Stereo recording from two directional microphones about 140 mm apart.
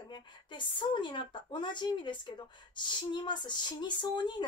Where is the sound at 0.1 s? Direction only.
35° left (ahead or behind).